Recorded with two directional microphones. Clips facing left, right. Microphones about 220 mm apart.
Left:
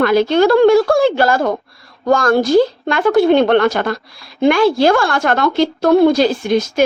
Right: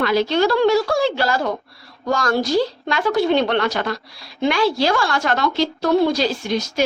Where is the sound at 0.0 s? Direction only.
50° left (ahead or behind).